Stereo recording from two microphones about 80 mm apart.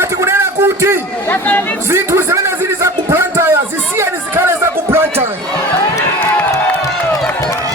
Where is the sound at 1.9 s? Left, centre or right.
Right.